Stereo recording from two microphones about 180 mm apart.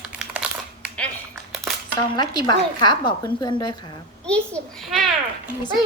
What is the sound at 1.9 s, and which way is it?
A woman's voice, 25° left (ahead or behind).